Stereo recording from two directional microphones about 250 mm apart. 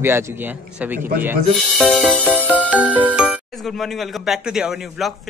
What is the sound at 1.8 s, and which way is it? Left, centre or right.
Speech, centre.